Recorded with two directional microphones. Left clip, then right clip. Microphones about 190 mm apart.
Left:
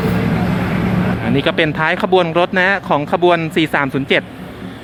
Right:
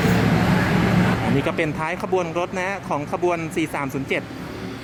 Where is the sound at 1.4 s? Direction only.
5° left (ahead or behind).